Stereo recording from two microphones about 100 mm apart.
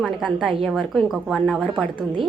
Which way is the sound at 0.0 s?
10° right (ahead or behind).